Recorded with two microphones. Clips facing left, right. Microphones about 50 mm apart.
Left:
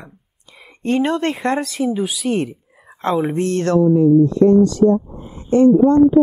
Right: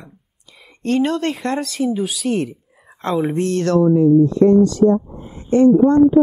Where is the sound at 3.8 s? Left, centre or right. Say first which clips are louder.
Even; right.